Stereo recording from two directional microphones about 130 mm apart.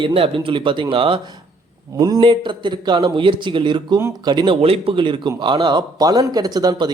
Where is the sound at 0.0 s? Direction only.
45° right (ahead or behind).